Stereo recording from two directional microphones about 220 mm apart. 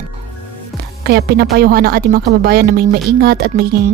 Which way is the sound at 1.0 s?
45° right (ahead or behind).